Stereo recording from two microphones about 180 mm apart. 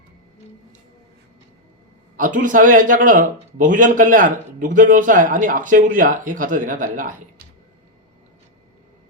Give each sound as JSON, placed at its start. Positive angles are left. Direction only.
{"t": 2.1, "sound": "a man's voice", "side_deg": -45}